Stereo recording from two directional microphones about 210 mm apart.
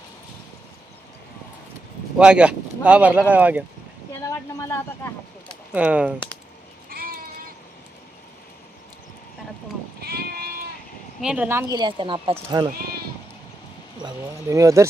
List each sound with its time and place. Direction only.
2.1 s speech: 5° right (ahead or behind)
4.2 s speech: 15° left (ahead or behind)
5.7 s speech: 5° right (ahead or behind)
6.9 s a sound: 45° right (ahead or behind)
10.0 s sheep: 50° right (ahead or behind)
11.2 s speech: 5° right (ahead or behind); by 12.7 s 25° right (ahead or behind)
14.5 s speech: 15° right (ahead or behind)